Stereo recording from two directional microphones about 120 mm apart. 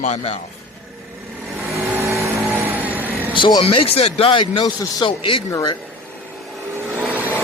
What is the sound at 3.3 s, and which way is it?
A man's voice, 45° left (ahead or behind).